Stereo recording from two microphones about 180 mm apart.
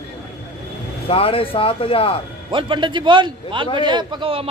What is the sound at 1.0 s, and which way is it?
Speech, 30° left (ahead or behind).